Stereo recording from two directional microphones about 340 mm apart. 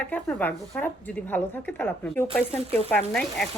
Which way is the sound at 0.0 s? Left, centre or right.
Centre.